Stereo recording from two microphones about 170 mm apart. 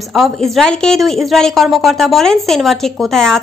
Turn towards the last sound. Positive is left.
turn(degrees=5)  # may be behind; listen again after turning